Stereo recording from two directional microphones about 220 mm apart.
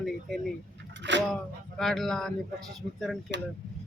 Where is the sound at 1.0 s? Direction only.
50° right (ahead or behind).